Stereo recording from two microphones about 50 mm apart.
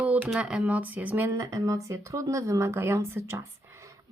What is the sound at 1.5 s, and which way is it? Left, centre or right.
A woman's voice, right.